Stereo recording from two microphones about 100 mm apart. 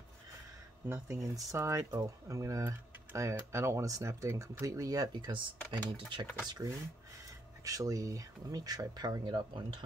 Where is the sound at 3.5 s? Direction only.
30° right (ahead or behind); by 6.0 s 50° right (ahead or behind).